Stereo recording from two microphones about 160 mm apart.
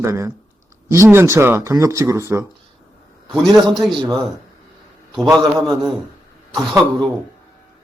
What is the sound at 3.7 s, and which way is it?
Speech, centre (ahead or behind).